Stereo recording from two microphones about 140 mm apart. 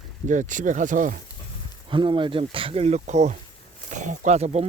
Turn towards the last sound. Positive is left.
turn(degrees=-50)  # may be behind; listen again after turning